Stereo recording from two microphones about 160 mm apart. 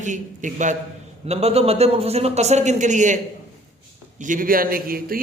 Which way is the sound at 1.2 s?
40° right (ahead or behind).